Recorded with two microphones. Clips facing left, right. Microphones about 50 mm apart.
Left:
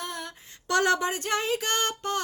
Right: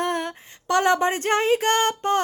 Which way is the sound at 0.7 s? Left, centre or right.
Right.